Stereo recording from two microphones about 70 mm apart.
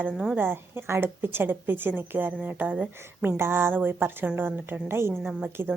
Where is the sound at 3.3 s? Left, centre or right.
Right.